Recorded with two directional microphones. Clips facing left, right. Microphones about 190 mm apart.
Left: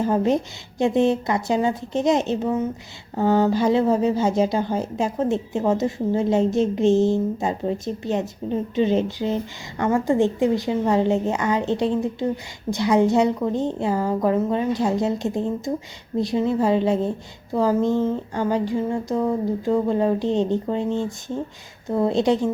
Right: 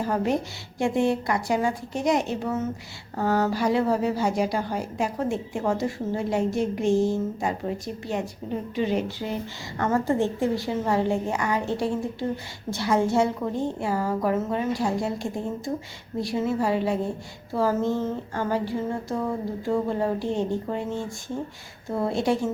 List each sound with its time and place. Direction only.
0.0 s speech: 20° left (ahead or behind)
17.5 s a sound: 15° left (ahead or behind)
19.6 s speech: 20° left (ahead or behind)